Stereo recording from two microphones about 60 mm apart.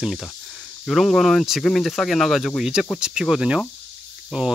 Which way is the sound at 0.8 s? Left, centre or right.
Centre.